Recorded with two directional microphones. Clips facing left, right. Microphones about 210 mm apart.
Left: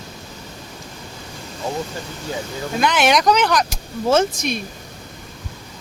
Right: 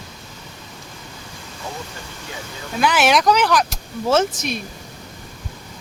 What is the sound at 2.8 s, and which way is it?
Speech, 5° right (ahead or behind).